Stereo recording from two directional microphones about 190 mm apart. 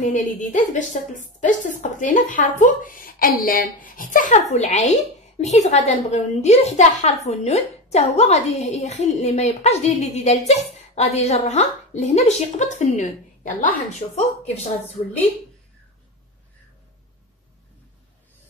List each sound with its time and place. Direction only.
0.0 s a woman's voice: 40° left (ahead or behind)